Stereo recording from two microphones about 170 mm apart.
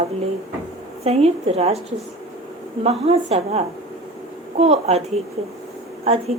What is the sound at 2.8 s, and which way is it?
A woman's voice, 35° right (ahead or behind).